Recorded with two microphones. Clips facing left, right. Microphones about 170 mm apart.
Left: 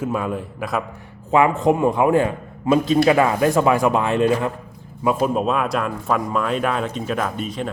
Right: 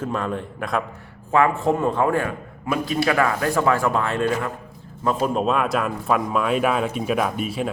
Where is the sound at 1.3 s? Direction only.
20° left (ahead or behind).